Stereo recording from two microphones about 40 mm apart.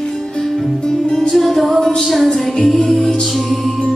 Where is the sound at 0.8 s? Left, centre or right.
Centre.